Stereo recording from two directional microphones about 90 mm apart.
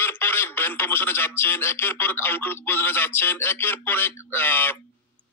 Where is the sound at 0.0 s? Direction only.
25° left (ahead or behind).